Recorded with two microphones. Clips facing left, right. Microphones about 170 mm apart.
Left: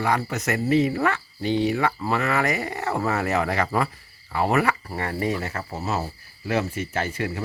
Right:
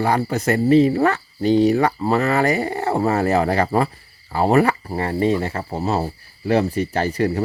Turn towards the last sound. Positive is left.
turn(degrees=-35)  # may be behind; listen again after turning